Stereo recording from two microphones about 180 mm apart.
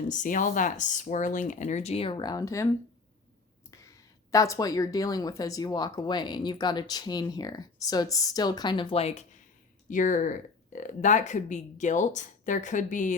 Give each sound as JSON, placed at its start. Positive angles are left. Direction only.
{"t": 0.1, "sound": "speech", "side_deg": 45}
{"t": 3.7, "sound": "speech", "side_deg": 20}